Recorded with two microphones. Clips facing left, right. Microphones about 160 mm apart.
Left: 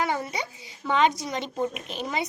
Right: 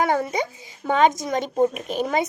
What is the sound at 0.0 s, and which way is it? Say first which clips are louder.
Speech: right 6 dB; 50° right (ahead or behind).